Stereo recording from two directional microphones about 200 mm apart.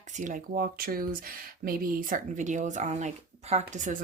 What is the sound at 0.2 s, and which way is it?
Speech, 45° right (ahead or behind).